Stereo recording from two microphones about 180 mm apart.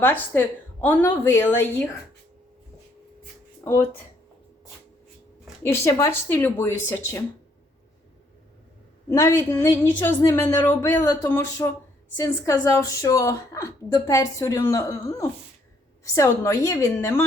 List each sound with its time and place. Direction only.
0.0 s a woman's voice: 10° left (ahead or behind)
3.6 s speech: 15° left (ahead or behind)
5.6 s a woman's voice: 15° left (ahead or behind)
9.0 s a woman's voice: 15° left (ahead or behind)